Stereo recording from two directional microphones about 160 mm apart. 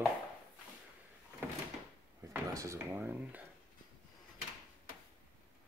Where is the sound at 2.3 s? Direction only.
20° right (ahead or behind).